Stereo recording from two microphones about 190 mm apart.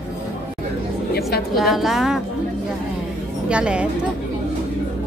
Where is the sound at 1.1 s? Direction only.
55° left (ahead or behind).